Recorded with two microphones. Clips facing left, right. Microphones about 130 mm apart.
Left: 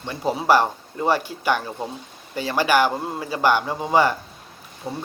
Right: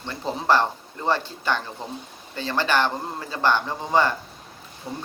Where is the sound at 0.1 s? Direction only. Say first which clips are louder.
Left 3 dB; 15° left (ahead or behind).